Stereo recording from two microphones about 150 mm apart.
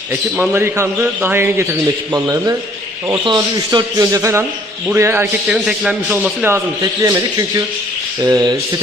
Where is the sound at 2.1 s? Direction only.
20° right (ahead or behind).